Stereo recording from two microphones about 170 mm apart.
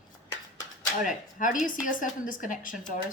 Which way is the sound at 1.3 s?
50° left (ahead or behind).